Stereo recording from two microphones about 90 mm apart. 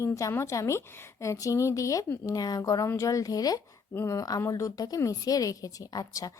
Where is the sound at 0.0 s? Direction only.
35° left (ahead or behind).